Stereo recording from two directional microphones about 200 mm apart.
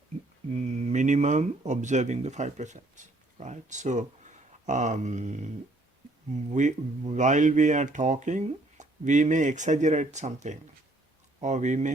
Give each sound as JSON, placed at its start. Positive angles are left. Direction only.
{"t": 0.5, "sound": "speech", "side_deg": -35}